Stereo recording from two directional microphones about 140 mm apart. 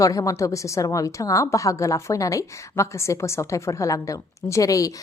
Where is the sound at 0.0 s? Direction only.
25° left (ahead or behind).